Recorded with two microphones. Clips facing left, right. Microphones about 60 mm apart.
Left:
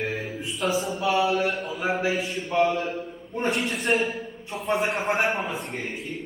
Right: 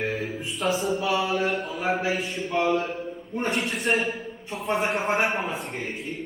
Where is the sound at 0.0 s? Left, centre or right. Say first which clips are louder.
Right 1 dB; centre.